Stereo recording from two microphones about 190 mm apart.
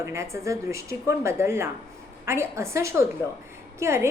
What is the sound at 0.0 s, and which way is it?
A woman's voice, 15° right (ahead or behind).